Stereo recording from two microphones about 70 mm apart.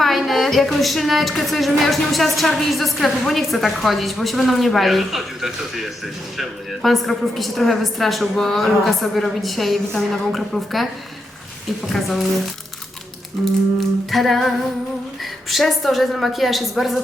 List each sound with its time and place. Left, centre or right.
0.0 s a woman's voice: centre
11.9 s a woman's voice: centre
13.4 s a woman's voice: centre